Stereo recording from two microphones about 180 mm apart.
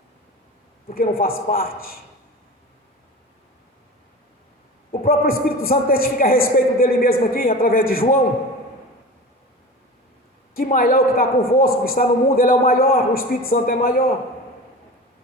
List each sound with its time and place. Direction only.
0.9 s a man's voice: 55° left (ahead or behind)
4.9 s a man's voice: 55° left (ahead or behind)
10.5 s a woman's voice: 50° left (ahead or behind)